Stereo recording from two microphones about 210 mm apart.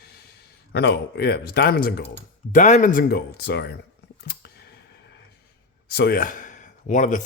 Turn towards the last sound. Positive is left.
turn(degrees=35)  # may be behind; listen again after turning